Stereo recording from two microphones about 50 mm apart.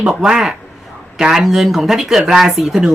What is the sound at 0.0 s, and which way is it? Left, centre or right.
Speech, centre.